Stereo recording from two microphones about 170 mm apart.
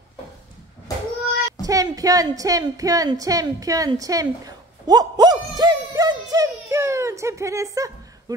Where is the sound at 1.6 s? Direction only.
20° right (ahead or behind).